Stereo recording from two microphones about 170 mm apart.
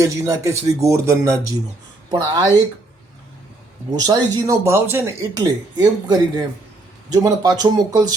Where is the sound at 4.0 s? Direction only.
20° right (ahead or behind).